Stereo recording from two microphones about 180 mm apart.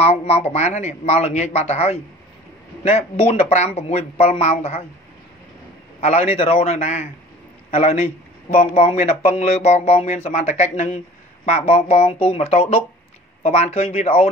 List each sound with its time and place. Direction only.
0.0 s speech: 35° left (ahead or behind)
5.9 s speech: 35° left (ahead or behind)